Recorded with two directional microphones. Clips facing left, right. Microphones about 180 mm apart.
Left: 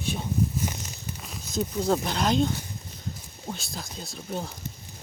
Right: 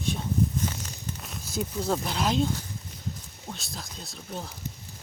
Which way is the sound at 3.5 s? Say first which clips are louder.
Left 1 dB; centre (ahead or behind).